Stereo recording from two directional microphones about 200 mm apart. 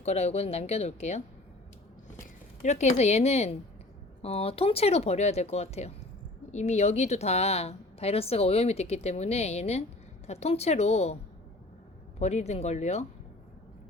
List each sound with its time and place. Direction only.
0.0 s a woman's voice: 35° left (ahead or behind)
2.2 s a woman's voice: 35° left (ahead or behind)
12.2 s a woman's voice: 35° left (ahead or behind)